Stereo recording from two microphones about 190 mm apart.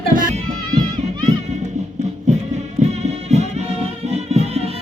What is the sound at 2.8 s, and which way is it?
Music, 40° right (ahead or behind).